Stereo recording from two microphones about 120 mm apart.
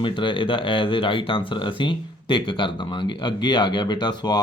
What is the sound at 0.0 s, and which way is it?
Mantra, 45° left (ahead or behind).